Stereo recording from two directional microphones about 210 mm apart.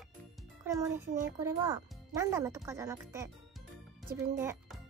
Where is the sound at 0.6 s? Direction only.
15° right (ahead or behind).